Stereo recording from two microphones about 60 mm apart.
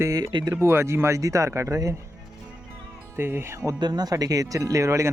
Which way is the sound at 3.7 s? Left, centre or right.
Right.